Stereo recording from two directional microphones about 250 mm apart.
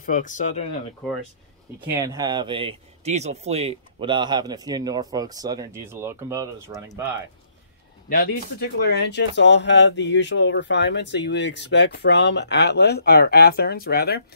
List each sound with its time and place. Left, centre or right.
0.0 s speech: left
2.0 s speech: centre
8.1 s speech: left